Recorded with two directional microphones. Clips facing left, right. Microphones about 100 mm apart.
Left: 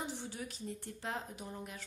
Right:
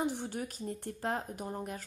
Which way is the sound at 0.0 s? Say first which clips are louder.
Right 7 dB; 50° right (ahead or behind).